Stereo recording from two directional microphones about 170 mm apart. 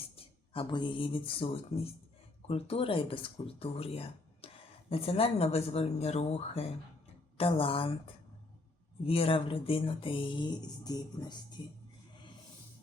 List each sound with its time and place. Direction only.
0.2 s speech: 35° left (ahead or behind)